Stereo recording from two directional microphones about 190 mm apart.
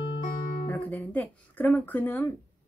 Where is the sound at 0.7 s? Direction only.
10° left (ahead or behind).